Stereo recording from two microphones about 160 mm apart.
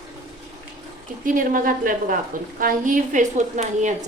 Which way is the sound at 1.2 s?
60° right (ahead or behind).